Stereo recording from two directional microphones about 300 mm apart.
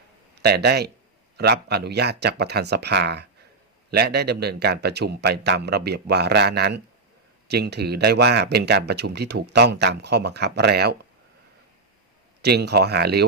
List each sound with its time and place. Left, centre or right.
0.3 s speech: right
12.4 s speech: right